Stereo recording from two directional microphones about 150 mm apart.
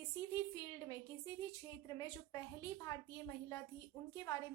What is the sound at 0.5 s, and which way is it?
A woman's voice, 25° left (ahead or behind).